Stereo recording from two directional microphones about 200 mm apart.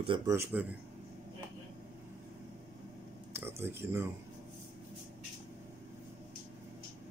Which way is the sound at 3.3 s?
10° right (ahead or behind).